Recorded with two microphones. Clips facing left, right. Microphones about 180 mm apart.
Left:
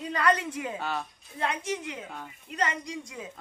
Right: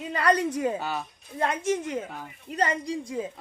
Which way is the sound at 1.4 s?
45° right (ahead or behind).